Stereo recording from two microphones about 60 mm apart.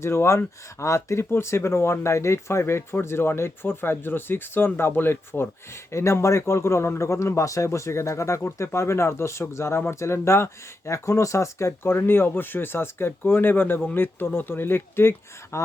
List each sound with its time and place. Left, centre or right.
0.0 s speech: left
5.9 s speech: left
11.8 s speech: left
15.5 s speech: left